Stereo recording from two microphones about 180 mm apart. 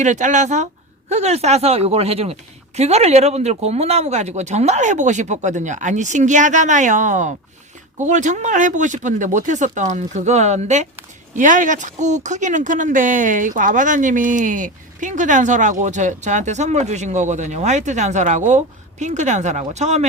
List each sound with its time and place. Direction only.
0.0 s speech: 40° right (ahead or behind)